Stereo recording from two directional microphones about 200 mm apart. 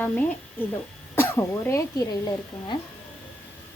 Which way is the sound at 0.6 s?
10° left (ahead or behind).